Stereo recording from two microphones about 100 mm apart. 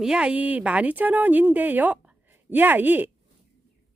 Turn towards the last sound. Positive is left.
turn(degrees=-20)  # may be behind; listen again after turning